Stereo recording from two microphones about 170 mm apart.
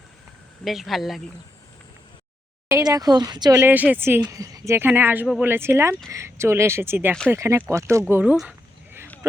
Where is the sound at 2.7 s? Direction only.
20° right (ahead or behind).